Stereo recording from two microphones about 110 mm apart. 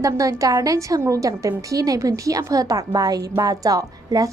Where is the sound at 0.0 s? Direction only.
30° right (ahead or behind).